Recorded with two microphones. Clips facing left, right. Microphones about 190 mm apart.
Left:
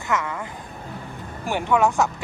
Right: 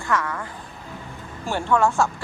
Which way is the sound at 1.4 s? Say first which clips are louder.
Even; 15° left (ahead or behind).